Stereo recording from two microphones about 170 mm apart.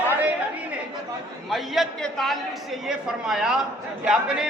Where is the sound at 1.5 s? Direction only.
Centre (ahead or behind).